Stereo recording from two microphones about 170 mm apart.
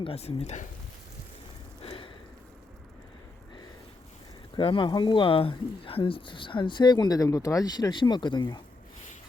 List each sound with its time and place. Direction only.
0.0 s speech: 35° left (ahead or behind)
1.8 s a sound: 30° left (ahead or behind)
4.5 s speech: 30° left (ahead or behind)